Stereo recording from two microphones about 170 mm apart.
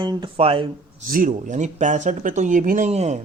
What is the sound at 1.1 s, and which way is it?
Speech, 50° right (ahead or behind).